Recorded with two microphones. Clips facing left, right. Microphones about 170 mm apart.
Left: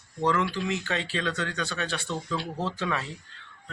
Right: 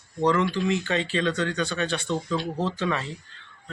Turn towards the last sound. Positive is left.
turn(degrees=5)  # may be behind; listen again after turning